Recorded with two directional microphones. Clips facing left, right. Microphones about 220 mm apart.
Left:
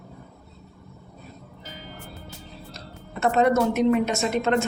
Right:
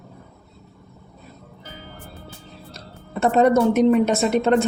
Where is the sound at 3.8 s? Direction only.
40° right (ahead or behind).